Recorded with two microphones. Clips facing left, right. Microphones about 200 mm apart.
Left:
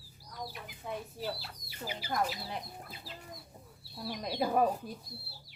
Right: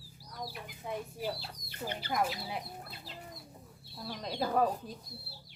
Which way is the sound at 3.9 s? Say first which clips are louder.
Left 2 dB; 5° left (ahead or behind).